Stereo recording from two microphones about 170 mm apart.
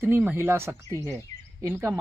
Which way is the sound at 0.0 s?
10° right (ahead or behind).